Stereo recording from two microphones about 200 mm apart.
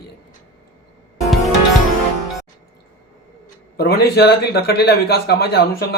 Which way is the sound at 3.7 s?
50° left (ahead or behind).